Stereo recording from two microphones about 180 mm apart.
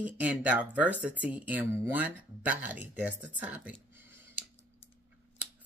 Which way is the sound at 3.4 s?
10° right (ahead or behind).